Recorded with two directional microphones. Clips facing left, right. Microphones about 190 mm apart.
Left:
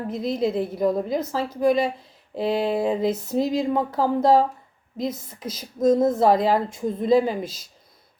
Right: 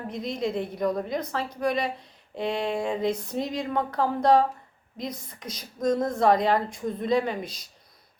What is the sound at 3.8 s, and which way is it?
A woman's voice, 5° left (ahead or behind).